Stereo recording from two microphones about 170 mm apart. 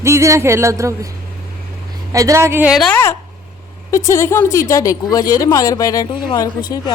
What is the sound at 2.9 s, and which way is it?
Speech, 15° left (ahead or behind).